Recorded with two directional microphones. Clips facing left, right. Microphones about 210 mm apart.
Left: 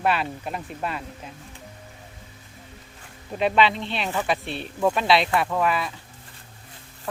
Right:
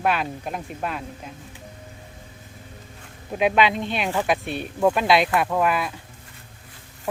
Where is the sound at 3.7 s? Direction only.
45° right (ahead or behind).